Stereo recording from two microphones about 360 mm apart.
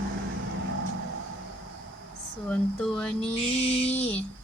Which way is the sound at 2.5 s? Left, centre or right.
Centre.